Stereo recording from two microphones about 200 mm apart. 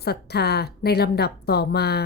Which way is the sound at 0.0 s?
55° left (ahead or behind).